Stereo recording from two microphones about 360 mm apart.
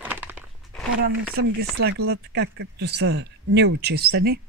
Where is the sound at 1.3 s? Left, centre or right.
Right.